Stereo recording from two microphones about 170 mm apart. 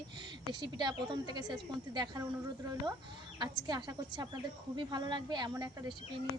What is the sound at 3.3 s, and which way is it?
Speech, 25° right (ahead or behind).